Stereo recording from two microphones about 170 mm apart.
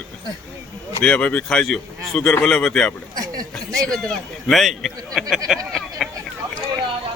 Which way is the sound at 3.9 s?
5° left (ahead or behind).